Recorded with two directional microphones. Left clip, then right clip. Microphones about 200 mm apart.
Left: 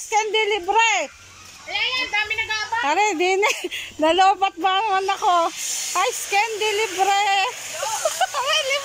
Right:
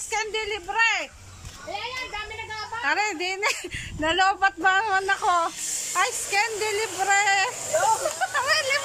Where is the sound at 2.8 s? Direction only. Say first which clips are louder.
Left 4 dB; 15° left (ahead or behind).